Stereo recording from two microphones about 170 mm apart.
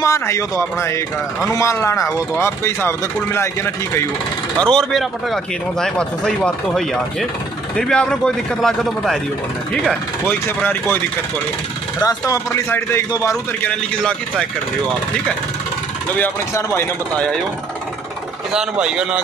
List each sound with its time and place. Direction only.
0.0 s speech: 15° left (ahead or behind)
4.6 s a man's voice: 5° left (ahead or behind)
10.2 s speech: 10° left (ahead or behind)
12.0 s speech: 20° left (ahead or behind)
13.7 s a man's voice: 5° left (ahead or behind)
16.2 s speech: 10° left (ahead or behind)
18.5 s a man's voice: 5° right (ahead or behind)